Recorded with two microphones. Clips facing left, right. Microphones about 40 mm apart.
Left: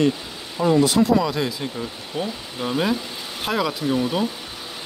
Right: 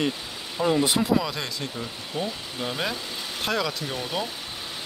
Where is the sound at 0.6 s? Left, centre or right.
Centre.